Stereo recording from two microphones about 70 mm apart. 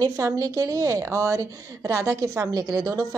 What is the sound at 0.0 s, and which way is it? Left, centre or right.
A woman's voice, right.